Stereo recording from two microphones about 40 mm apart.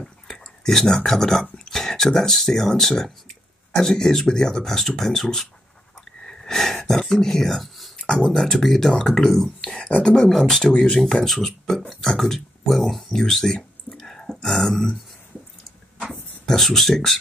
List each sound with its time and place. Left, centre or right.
0.3 s speech: centre
6.2 s a sound: centre
8.1 s speech: centre
8.4 s speech: centre
9.8 s speech: left; by 15.0 s centre
16.4 s speech: centre